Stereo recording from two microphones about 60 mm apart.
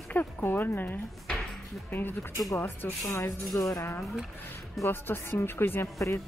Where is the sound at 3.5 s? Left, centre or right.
Left.